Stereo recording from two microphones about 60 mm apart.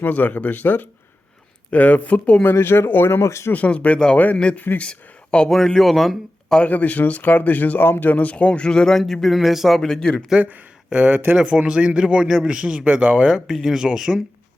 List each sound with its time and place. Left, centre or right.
0.1 s a man's voice: left
2.4 s speech: left
3.5 s a man's voice: left; by 6.6 s centre
6.6 s a man's voice: left
9.2 s a man's voice: centre
10.3 s speech: right
13.3 s a man's voice: centre